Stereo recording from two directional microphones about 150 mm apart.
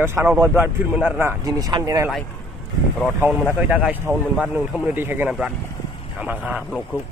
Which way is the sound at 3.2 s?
15° right (ahead or behind).